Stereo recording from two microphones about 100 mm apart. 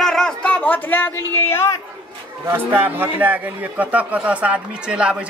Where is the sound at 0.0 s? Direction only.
5° left (ahead or behind); by 1.8 s 25° left (ahead or behind).